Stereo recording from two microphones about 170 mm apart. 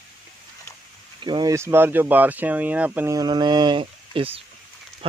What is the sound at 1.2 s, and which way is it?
Speech, 25° right (ahead or behind).